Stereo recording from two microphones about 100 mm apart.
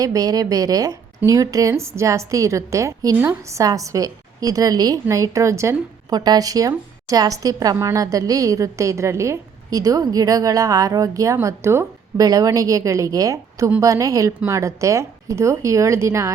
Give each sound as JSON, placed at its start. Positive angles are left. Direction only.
{"t": 0.0, "sound": "a woman's voice", "side_deg": -35}
{"t": 12.2, "sound": "a woman's voice", "side_deg": -35}